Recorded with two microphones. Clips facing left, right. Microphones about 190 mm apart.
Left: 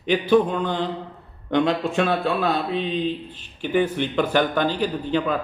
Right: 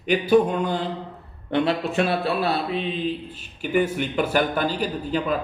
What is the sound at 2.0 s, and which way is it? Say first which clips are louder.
Speech: left 1 dB; 35° right (ahead or behind).